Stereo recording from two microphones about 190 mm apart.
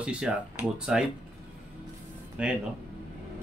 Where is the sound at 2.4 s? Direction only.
5° right (ahead or behind).